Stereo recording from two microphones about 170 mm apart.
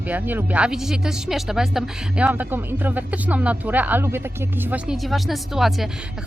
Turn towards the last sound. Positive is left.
turn(degrees=0)  # may be behind; listen again after turning